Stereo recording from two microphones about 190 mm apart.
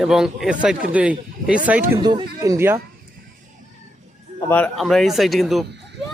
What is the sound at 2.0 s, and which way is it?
Speech, 20° right (ahead or behind).